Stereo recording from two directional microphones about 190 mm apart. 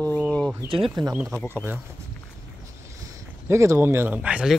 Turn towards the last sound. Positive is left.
turn(degrees=-5)  # may be behind; listen again after turning